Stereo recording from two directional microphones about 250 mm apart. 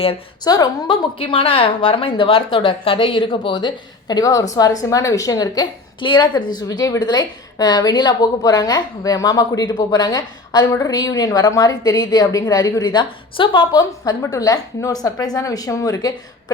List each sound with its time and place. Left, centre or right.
0.0 s a woman's voice: centre